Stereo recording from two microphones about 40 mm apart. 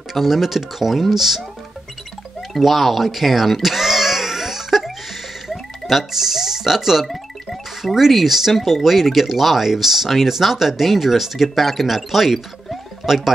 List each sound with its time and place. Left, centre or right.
0.1 s speech: centre
2.5 s a sound: centre
5.5 s speech: centre